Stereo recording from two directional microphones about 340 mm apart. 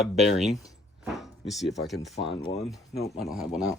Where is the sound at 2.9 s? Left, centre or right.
Left.